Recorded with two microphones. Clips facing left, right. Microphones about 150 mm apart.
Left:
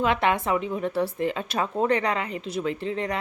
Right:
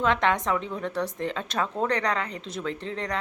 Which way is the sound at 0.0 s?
10° left (ahead or behind).